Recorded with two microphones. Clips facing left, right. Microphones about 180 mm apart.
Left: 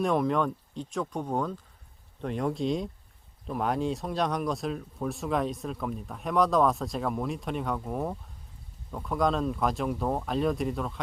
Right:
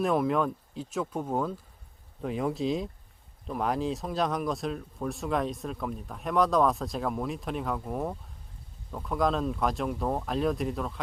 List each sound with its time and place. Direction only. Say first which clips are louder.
0.0 s speech: even; 5° right (ahead or behind)